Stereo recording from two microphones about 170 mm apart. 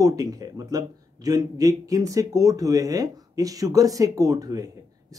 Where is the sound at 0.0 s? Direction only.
20° right (ahead or behind).